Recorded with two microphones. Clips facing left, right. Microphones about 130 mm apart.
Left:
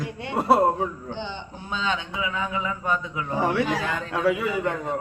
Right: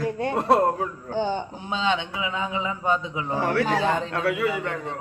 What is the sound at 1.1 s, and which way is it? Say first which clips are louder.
Speech: right 8 dB; 45° right (ahead or behind).